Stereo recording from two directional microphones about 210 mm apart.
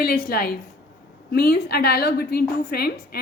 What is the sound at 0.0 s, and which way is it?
A woman's voice, 45° left (ahead or behind).